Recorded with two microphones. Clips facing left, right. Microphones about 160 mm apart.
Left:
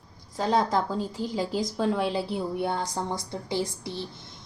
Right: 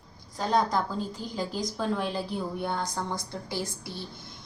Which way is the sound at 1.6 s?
25° left (ahead or behind).